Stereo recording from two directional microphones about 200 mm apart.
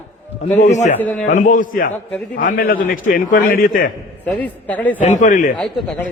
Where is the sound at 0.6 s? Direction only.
35° left (ahead or behind).